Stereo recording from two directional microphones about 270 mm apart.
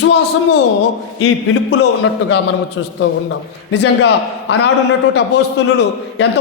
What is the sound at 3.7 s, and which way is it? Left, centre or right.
A man's voice, left.